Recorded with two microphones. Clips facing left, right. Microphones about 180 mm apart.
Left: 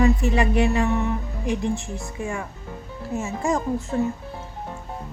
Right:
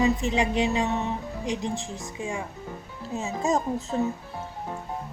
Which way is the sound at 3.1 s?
20° right (ahead or behind).